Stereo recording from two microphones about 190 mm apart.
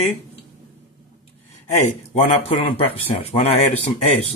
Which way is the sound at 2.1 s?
30° left (ahead or behind).